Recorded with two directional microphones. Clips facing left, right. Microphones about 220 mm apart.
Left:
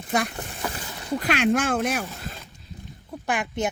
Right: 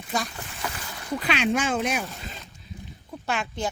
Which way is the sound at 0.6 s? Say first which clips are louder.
Left 1 dB; 30° left (ahead or behind).